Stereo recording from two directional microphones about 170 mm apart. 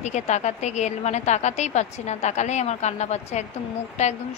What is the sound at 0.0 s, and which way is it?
A woman's voice, 45° left (ahead or behind).